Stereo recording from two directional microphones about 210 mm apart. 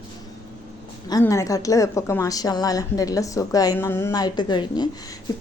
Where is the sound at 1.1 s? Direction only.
15° left (ahead or behind).